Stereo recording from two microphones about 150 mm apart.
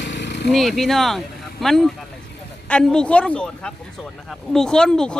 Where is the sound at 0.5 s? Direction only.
Centre (ahead or behind).